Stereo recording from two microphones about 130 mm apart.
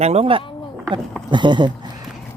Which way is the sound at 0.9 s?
35° right (ahead or behind).